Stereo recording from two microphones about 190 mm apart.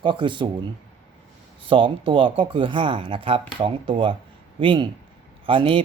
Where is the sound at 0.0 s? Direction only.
25° right (ahead or behind).